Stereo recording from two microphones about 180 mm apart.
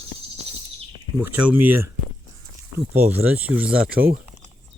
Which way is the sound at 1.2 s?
10° right (ahead or behind).